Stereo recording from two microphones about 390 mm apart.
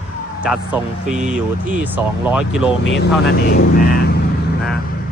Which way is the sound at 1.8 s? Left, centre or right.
Centre.